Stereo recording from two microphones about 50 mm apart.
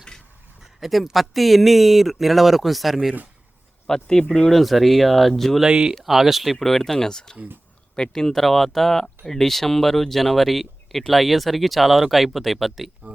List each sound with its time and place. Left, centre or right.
0.8 s speech: centre
3.8 s speech: centre
4.4 s speech: centre
5.6 s speech: centre
5.9 s speech: centre